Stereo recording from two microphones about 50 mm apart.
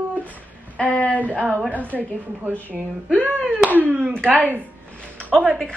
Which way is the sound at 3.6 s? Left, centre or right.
Right.